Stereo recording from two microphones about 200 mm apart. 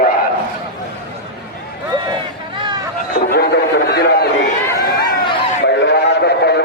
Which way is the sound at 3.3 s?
50° left (ahead or behind).